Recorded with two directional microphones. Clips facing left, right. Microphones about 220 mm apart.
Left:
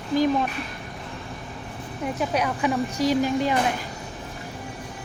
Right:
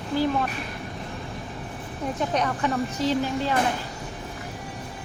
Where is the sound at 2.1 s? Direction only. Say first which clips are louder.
Even; 10° left (ahead or behind).